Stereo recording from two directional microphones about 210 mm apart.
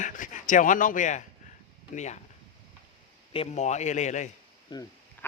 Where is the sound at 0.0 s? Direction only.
35° left (ahead or behind).